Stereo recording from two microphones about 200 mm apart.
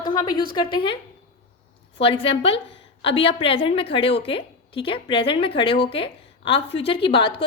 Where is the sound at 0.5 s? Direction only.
25° left (ahead or behind).